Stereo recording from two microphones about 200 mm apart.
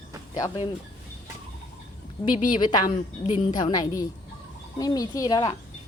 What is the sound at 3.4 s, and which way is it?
Speech, 35° left (ahead or behind).